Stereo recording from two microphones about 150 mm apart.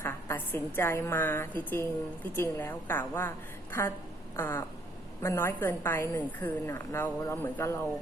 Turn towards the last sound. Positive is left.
turn(degrees=15)  # may be behind; listen again after turning